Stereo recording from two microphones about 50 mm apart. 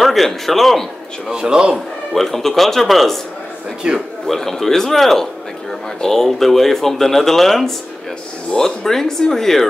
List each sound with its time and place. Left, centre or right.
0.0 s speech: centre
1.3 s a man's voice: centre
2.1 s speech: centre
3.8 s a man's voice: centre
4.3 s speech: centre